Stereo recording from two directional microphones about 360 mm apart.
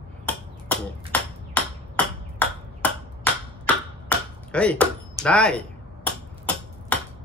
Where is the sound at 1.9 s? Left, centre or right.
Centre.